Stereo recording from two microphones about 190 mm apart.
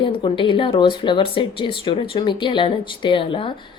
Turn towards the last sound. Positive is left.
turn(degrees=30)  # may be behind; listen again after turning